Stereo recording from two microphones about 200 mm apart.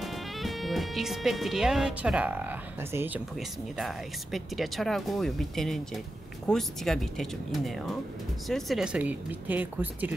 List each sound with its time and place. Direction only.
0.0 s speech: centre (ahead or behind)
3.3 s speech: centre (ahead or behind)